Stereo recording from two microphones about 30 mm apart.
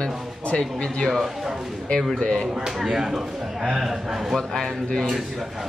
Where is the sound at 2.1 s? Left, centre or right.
Left.